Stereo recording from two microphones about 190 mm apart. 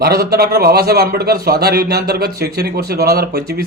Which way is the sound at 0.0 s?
55° right (ahead or behind).